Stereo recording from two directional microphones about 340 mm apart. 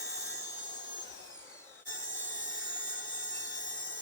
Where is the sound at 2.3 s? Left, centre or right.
Left.